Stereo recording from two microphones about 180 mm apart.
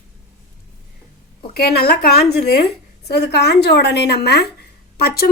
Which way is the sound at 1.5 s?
60° left (ahead or behind).